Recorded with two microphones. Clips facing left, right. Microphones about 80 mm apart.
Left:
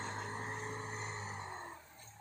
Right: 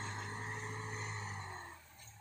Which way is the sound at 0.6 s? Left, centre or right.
Left.